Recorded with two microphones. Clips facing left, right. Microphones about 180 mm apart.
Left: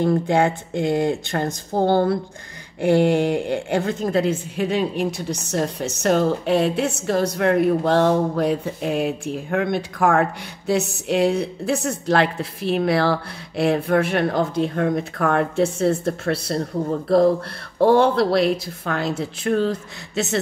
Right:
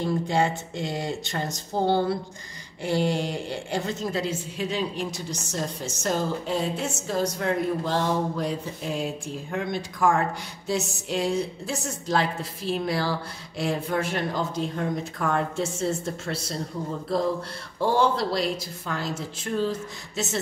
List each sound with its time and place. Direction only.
0.0 s a woman's voice: 55° left (ahead or behind)